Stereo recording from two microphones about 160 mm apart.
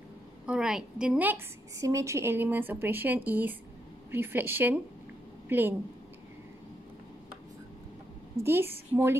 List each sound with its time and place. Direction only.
0.5 s a woman's voice: 5° right (ahead or behind)
8.5 s speech: 15° right (ahead or behind)